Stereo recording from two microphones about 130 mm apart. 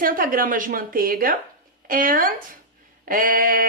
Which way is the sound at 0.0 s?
90° right.